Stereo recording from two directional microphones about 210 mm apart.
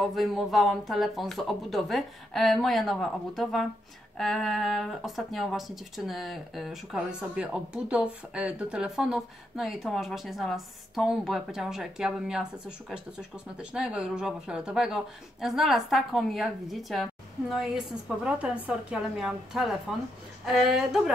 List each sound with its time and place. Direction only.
0.0 s speech: centre (ahead or behind)